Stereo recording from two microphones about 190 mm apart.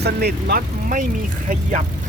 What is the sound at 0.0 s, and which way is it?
Speech, 55° right (ahead or behind).